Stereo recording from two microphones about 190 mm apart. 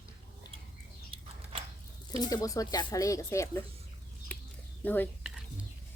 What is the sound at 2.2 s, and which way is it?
Speech, 20° left (ahead or behind).